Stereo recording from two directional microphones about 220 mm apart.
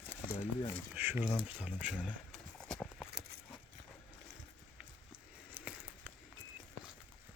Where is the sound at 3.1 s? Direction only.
50° right (ahead or behind).